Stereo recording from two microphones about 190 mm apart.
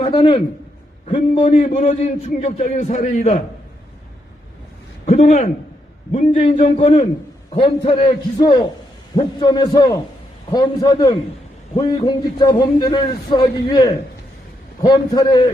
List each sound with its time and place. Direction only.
0.0 s a man's voice: 25° left (ahead or behind); by 3.4 s 40° left (ahead or behind)
5.0 s a man's voice: 35° left (ahead or behind)